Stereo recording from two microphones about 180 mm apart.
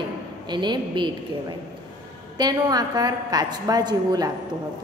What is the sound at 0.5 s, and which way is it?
Speech, 25° right (ahead or behind).